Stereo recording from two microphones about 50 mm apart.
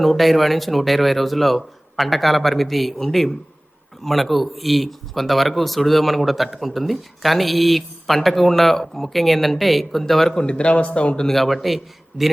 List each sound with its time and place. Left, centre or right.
0.0 s speech: centre
10.4 s speech: left
11.3 s speech: centre